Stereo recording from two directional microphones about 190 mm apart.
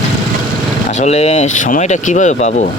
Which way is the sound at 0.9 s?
35° left (ahead or behind).